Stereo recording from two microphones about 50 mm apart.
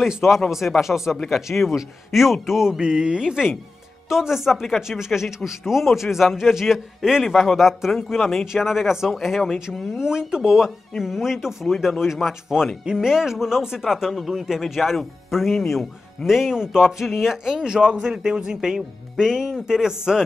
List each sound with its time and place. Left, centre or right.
0.5 s speech: centre
2.8 s speech: centre